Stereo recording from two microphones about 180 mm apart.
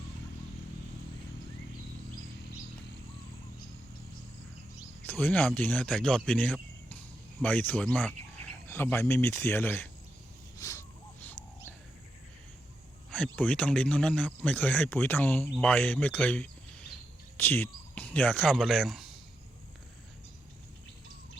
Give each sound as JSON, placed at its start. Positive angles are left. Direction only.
{"t": 5.0, "sound": "speech", "side_deg": 10}
{"t": 10.6, "sound": "wild animals", "side_deg": 15}
{"t": 13.1, "sound": "speech", "side_deg": 5}